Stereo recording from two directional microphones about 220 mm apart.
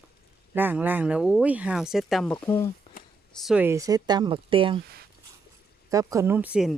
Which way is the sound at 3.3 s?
5° right (ahead or behind).